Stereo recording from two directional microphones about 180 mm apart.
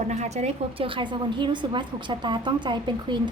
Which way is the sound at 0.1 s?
40° right (ahead or behind).